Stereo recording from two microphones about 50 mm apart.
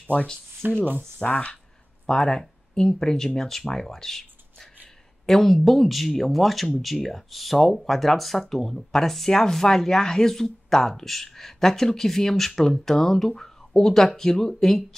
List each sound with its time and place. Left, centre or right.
0.0 s speech: left
0.6 s speech: right
0.9 s speech: left
2.0 s speech: centre